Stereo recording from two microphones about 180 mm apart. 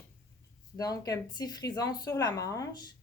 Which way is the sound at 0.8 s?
20° left (ahead or behind).